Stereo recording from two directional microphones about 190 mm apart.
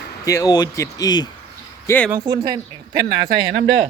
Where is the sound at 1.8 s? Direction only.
10° left (ahead or behind).